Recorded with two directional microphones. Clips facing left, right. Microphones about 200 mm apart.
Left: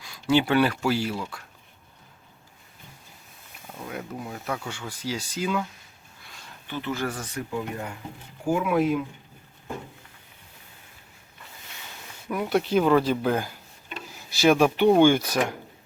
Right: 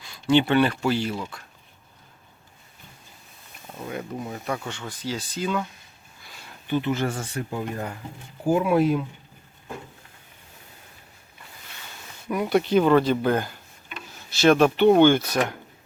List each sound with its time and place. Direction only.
0.0 s speech: 5° left (ahead or behind)
3.8 s speech: centre (ahead or behind)
6.7 s speech: 20° right (ahead or behind); by 9.0 s 35° right (ahead or behind)
12.3 s speech: centre (ahead or behind)